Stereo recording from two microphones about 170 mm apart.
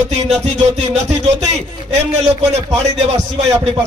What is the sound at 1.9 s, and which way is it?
Speech, 40° right (ahead or behind).